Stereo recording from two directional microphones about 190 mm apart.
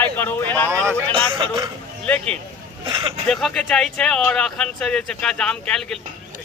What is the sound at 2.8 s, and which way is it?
Vehicle, 25° right (ahead or behind).